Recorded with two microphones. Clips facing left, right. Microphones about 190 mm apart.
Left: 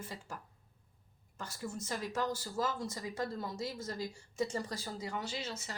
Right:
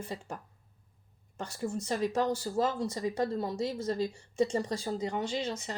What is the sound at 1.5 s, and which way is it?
A woman's voice, 30° right (ahead or behind).